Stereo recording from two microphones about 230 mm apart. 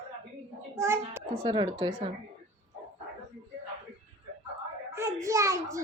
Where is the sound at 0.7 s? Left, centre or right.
Centre.